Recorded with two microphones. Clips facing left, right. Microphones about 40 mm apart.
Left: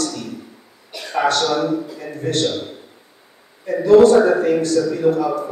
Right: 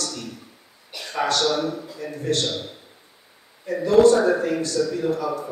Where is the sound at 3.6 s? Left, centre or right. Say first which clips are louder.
Left 5 dB; left.